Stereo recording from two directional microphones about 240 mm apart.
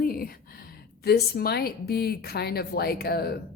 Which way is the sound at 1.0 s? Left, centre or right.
Left.